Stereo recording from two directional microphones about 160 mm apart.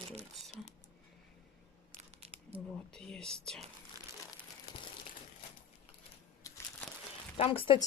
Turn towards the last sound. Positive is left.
turn(degrees=35)  # may be behind; listen again after turning